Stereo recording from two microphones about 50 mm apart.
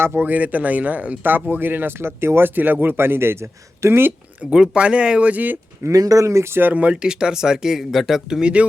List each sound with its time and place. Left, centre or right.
0.0 s speech: right
1.5 s speech: right
2.6 s speech: right
3.0 s speech: right
4.4 s speech: centre; by 5.5 s right
5.8 s speech: right
6.5 s speech: right
6.7 s speech: right
7.0 s speech: centre
8.3 s speech: centre